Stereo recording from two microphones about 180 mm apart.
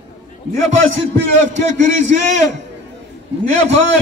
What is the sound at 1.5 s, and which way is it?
Speech, 40° right (ahead or behind).